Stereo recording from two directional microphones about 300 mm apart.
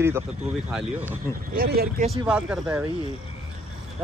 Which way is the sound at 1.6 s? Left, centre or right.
Right.